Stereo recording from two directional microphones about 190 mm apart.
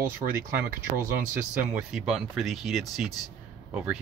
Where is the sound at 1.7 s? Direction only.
5° right (ahead or behind).